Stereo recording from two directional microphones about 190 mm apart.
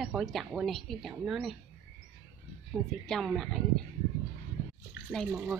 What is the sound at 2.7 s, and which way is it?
Speech, centre (ahead or behind).